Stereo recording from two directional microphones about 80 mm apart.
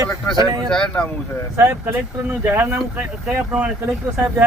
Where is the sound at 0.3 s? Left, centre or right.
Right.